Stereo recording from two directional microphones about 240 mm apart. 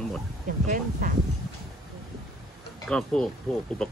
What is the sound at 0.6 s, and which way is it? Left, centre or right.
Speech, right.